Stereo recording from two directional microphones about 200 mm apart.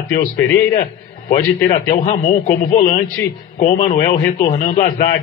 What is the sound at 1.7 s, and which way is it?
A man's voice, 40° left (ahead or behind).